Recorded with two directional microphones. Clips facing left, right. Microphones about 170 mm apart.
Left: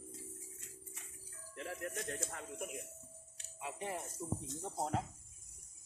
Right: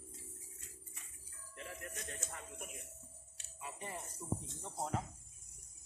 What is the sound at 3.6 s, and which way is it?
Music, 75° left (ahead or behind).